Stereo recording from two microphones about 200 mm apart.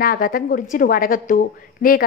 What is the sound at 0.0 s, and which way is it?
A woman's voice, 45° left (ahead or behind).